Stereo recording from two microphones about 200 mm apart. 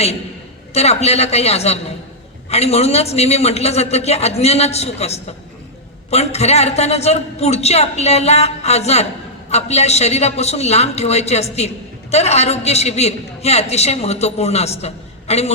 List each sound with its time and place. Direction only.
0.7 s a man's voice: 30° left (ahead or behind)